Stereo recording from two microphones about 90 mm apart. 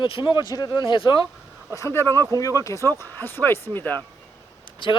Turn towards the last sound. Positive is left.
turn(degrees=70)  # may be behind; listen again after turning